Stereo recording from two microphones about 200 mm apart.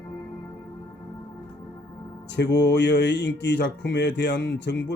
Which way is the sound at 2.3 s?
60° left (ahead or behind).